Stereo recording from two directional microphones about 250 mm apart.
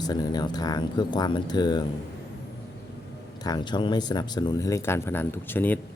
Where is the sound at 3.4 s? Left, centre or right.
Centre.